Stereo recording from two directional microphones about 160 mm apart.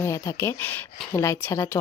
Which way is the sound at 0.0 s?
20° left (ahead or behind).